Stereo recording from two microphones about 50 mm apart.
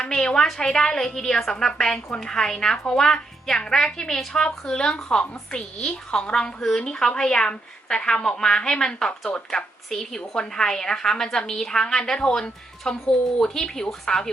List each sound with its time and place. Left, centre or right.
0.0 s a woman's voice: centre